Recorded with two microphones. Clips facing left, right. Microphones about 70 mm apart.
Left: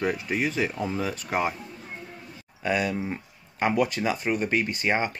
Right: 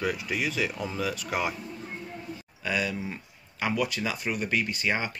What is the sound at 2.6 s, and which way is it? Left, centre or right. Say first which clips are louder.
Speech: left 4 dB; left.